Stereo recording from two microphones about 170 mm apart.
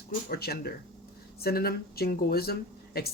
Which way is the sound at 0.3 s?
65° left (ahead or behind).